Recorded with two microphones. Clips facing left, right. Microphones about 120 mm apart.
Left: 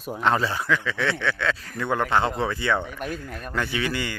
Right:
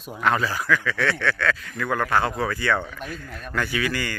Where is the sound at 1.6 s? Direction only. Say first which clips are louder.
Even; 35° left (ahead or behind); by 3.3 s 15° left (ahead or behind).